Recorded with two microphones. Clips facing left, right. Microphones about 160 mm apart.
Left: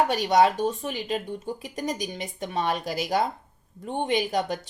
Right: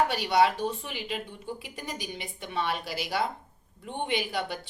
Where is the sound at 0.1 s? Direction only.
45° left (ahead or behind).